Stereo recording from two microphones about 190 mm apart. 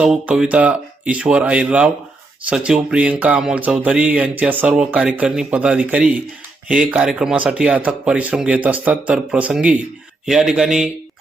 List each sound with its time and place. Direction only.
0.0 s speech: 5° right (ahead or behind)